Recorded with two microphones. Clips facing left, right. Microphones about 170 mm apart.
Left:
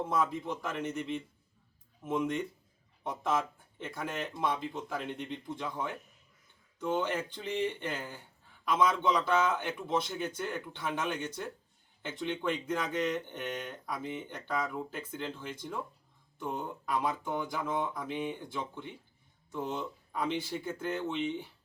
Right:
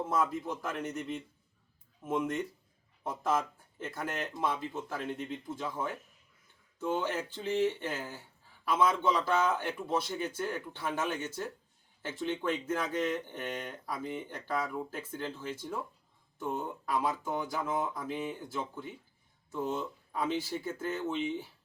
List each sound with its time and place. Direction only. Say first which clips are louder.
0.1 s speech: right 2 dB; centre (ahead or behind)
7.6 s speech: right 2 dB; 5° right (ahead or behind)